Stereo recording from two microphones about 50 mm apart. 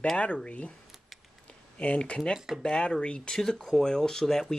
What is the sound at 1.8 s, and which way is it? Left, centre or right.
Speech, left.